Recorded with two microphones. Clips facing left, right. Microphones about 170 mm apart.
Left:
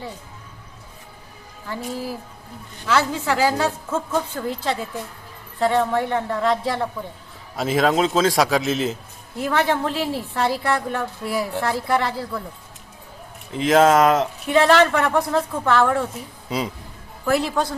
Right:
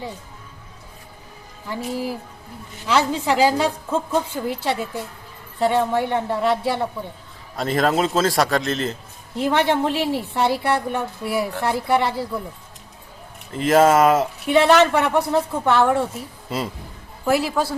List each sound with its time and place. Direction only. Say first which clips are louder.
1.7 s a woman's voice: right 2 dB; 15° right (ahead or behind)
7.5 s a man's voice: left 1 dB; centre (ahead or behind)
9.4 s a woman's voice: right 2 dB; 25° right (ahead or behind)
13.5 s a man's voice: even; centre (ahead or behind)
14.5 s a woman's voice: right 1 dB; 20° right (ahead or behind)
16.5 s a man's voice: left 1 dB; centre (ahead or behind)